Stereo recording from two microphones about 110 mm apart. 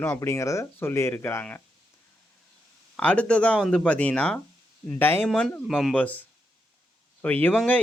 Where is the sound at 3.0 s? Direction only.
10° left (ahead or behind).